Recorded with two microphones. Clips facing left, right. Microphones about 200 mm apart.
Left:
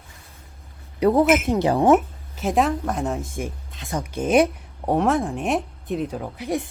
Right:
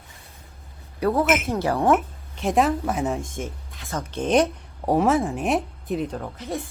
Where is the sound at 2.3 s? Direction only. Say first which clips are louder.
Even; centre (ahead or behind).